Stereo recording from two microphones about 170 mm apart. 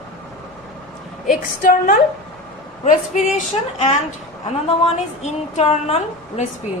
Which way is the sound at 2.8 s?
45° left (ahead or behind).